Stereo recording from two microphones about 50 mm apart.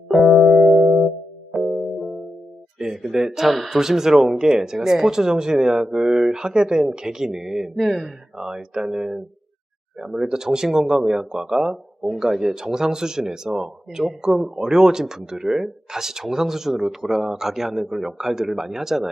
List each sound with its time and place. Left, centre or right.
0.3 s music: centre
2.7 s a man's voice: centre